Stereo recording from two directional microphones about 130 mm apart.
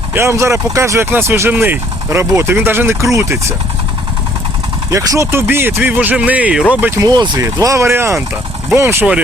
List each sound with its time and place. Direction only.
0.1 s speech: 20° right (ahead or behind)
4.9 s speech: 25° right (ahead or behind); by 6.9 s 10° right (ahead or behind)
6.9 s speech: 30° right (ahead or behind); by 9.2 s 15° right (ahead or behind)